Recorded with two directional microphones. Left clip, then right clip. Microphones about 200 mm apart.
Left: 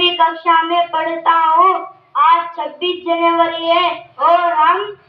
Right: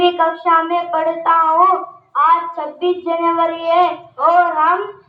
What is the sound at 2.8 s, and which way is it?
Child singing, 25° left (ahead or behind).